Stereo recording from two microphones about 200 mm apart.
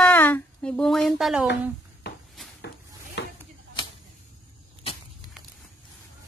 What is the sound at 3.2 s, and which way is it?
Chopping, 60° left (ahead or behind).